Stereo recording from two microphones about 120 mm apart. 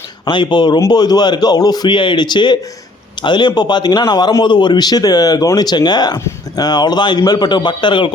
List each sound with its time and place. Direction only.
0.3 s a man's voice: 40° left (ahead or behind)
6.1 s speech: 20° left (ahead or behind)
6.7 s a man's voice: 35° left (ahead or behind)